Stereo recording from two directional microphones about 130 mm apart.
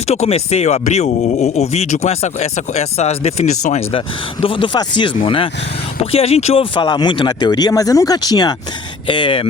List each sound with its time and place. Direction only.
0.1 s speech: 55° left (ahead or behind)
3.9 s speech: 45° left (ahead or behind)
6.8 s speech: 35° left (ahead or behind)